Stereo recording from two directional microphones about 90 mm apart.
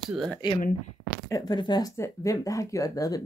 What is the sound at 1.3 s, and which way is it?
Speech, 40° left (ahead or behind).